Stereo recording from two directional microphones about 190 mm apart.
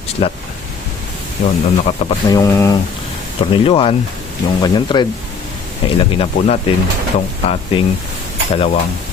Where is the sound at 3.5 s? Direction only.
30° left (ahead or behind).